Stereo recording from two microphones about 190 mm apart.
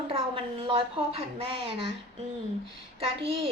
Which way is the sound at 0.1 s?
30° right (ahead or behind).